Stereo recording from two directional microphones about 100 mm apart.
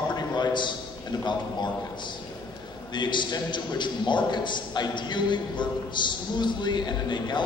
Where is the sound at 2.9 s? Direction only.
50° left (ahead or behind).